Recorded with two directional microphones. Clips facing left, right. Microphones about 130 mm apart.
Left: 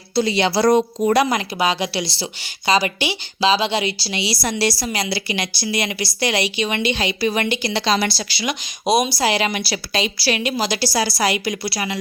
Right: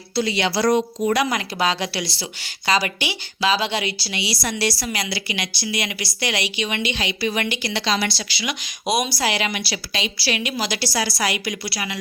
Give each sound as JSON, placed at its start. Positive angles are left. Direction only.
{"t": 0.2, "sound": "a woman's voice", "side_deg": 30}
{"t": 1.5, "sound": "a woman's voice", "side_deg": 15}